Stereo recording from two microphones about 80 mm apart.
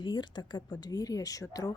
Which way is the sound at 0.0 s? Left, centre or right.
Left.